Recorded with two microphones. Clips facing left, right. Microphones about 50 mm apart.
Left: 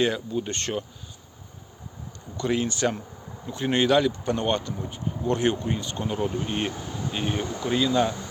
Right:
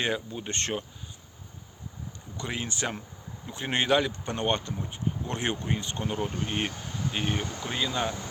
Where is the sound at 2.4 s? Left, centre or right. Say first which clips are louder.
Left 8 dB; centre.